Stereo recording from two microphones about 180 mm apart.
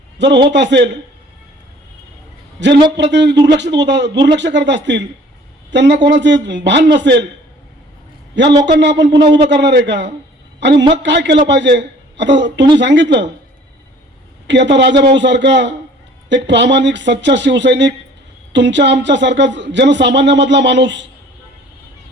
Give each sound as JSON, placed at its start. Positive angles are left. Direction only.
{"t": 0.2, "sound": "speech", "side_deg": -75}
{"t": 2.6, "sound": "speech", "side_deg": -75}
{"t": 8.6, "sound": "a man's voice", "side_deg": -75}
{"t": 14.4, "sound": "speech", "side_deg": -80}